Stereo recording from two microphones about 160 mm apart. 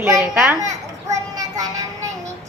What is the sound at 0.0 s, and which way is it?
Children playing, 20° right (ahead or behind).